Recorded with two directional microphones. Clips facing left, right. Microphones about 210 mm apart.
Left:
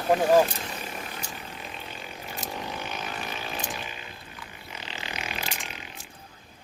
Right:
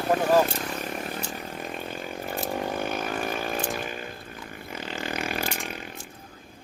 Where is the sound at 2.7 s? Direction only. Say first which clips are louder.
Right 6 dB; 50° right (ahead or behind).